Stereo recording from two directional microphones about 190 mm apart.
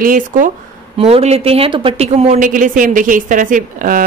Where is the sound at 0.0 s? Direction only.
45° right (ahead or behind).